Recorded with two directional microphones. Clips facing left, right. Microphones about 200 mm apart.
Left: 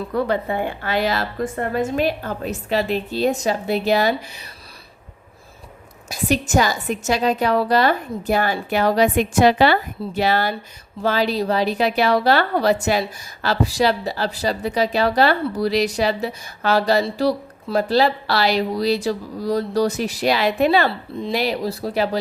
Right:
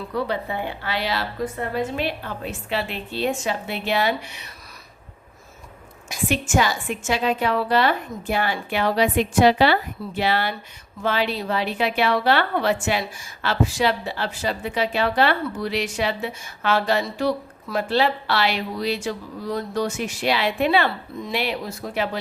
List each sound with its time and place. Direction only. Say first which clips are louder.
0.1 s a woman's voice: left 4 dB; 50° left (ahead or behind)
6.2 s a woman's voice: left 3 dB; 40° left (ahead or behind)